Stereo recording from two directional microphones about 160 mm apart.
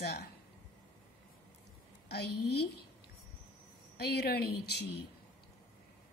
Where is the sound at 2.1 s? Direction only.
90° left.